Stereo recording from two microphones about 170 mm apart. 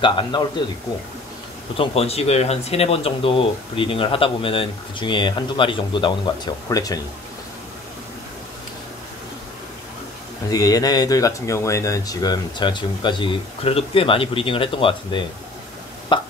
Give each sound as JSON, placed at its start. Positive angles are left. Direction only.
{"t": 0.0, "sound": "speech", "side_deg": 30}
{"t": 1.8, "sound": "speech", "side_deg": 35}
{"t": 10.5, "sound": "speech", "side_deg": 20}
{"t": 16.1, "sound": "a sound", "side_deg": 30}